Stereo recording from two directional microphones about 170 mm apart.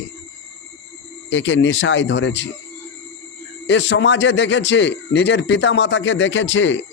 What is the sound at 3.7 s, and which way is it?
Speech, 90° left.